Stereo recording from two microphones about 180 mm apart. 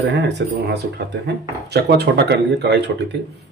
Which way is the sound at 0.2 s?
70° right (ahead or behind).